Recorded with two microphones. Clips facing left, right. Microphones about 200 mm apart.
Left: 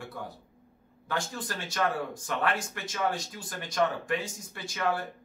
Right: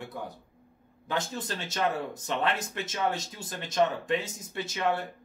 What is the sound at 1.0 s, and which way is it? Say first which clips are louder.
Speech: right 1 dB; 20° right (ahead or behind).